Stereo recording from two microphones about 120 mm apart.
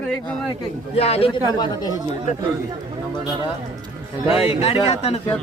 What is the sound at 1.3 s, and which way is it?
Speech, 35° left (ahead or behind).